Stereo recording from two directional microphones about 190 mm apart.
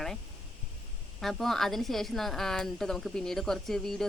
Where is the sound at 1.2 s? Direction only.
Centre (ahead or behind).